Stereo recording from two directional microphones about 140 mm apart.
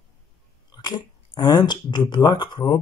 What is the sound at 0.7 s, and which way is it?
Speech, 30° left (ahead or behind).